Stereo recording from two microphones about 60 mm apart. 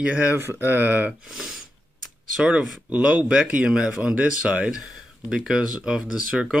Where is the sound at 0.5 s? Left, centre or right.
Right.